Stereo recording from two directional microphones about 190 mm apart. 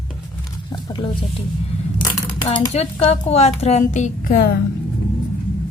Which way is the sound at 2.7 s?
35° left (ahead or behind).